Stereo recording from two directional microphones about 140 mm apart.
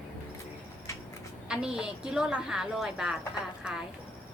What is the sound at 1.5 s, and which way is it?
A woman's voice, 5° right (ahead or behind).